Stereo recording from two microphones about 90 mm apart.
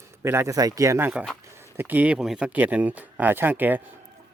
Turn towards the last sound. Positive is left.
turn(degrees=-20)  # may be behind; listen again after turning